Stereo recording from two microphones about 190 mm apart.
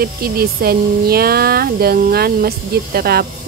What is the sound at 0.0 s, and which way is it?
Speech, 50° right (ahead or behind).